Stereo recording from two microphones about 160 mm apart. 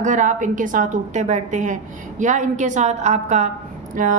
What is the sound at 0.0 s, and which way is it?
A woman's voice, 50° right (ahead or behind).